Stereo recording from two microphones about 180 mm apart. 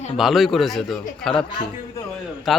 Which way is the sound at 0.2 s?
Centre (ahead or behind).